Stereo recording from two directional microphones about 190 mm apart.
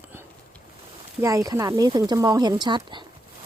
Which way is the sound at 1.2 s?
15° right (ahead or behind).